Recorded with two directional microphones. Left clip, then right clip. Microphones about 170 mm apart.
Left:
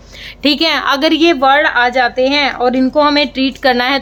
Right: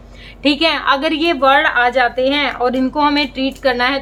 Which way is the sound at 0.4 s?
35° left (ahead or behind).